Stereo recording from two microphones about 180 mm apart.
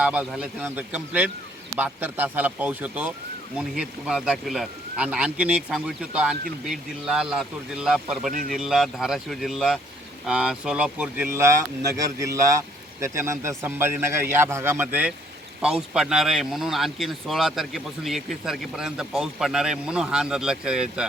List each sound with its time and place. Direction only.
0.0 s speech: 5° right (ahead or behind)
8.3 s speech: 50° right (ahead or behind)
8.5 s speech: 5° right (ahead or behind)